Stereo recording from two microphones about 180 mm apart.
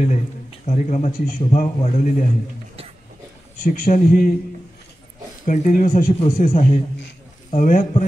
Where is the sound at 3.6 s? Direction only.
50° left (ahead or behind).